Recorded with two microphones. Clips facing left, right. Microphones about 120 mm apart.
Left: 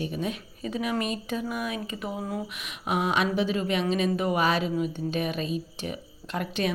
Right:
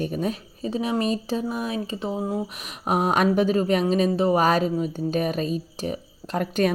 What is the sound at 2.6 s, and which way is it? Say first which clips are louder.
Speech: right 4 dB; 40° right (ahead or behind).